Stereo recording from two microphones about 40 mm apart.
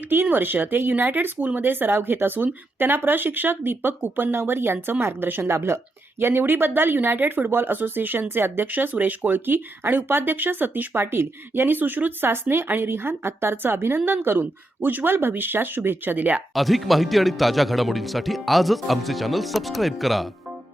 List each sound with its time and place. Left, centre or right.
0.3 s speech: right
8.7 s speech: right
10.9 s speech: right
12.3 s speech: right
12.6 s a woman's voice: right
16.1 s speech: right
16.6 s speech: centre